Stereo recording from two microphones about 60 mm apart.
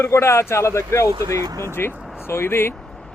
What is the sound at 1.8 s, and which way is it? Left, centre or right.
Speech, left.